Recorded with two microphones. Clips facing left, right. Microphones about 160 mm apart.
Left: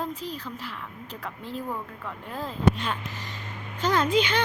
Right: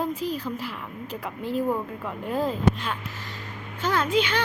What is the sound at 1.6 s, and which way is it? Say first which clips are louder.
Speech: right 7 dB; 20° right (ahead or behind).